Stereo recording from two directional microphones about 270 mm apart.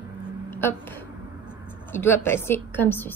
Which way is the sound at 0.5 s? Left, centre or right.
Centre.